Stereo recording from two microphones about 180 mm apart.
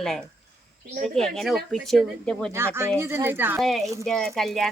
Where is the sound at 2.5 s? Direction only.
15° right (ahead or behind).